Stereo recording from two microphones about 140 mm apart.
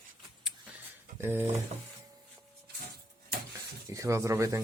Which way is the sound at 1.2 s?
15° right (ahead or behind).